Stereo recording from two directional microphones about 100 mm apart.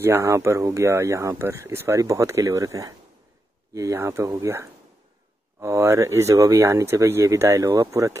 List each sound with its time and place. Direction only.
0.0 s speech: 25° right (ahead or behind)